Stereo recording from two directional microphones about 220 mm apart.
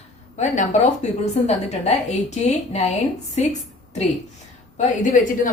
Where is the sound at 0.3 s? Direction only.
35° left (ahead or behind).